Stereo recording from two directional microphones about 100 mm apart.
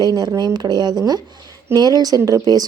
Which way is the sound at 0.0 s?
40° right (ahead or behind).